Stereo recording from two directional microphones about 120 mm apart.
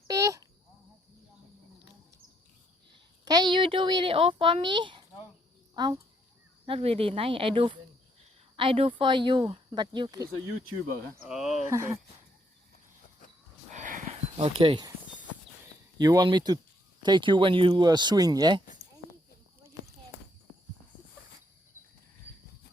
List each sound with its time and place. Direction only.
0.1 s a sound: 30° right (ahead or behind)
2.9 s speech: 40° right (ahead or behind)
6.7 s speech: 55° right (ahead or behind); by 10.2 s 40° right (ahead or behind)
11.3 s speech: 5° right (ahead or behind)
13.7 s a sound: 90° right; by 14.5 s 65° right (ahead or behind)
14.6 s speech: 45° right (ahead or behind)
16.0 s speech: 30° right (ahead or behind)